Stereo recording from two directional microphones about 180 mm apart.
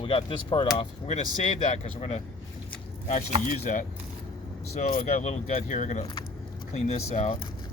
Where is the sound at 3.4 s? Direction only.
45° left (ahead or behind).